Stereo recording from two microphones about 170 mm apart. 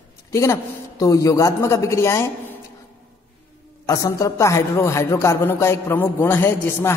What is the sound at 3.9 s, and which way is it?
A man's voice, 20° left (ahead or behind).